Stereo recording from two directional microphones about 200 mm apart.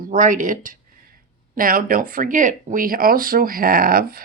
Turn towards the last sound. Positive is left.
turn(degrees=-45)  # may be behind; listen again after turning